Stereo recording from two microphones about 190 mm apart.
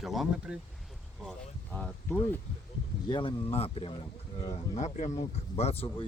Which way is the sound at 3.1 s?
25° left (ahead or behind).